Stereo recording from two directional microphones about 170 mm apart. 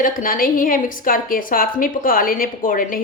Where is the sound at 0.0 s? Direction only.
55° left (ahead or behind).